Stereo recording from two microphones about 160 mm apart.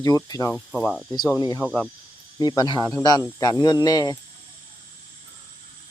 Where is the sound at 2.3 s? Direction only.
25° left (ahead or behind).